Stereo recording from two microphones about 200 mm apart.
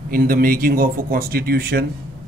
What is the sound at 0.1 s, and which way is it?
Speech, 45° right (ahead or behind).